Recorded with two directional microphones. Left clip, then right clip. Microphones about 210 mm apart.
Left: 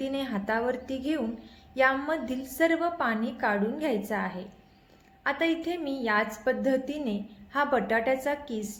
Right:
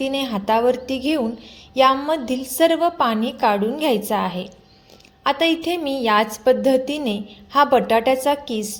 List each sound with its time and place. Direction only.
0.0 s a woman's voice: 30° right (ahead or behind)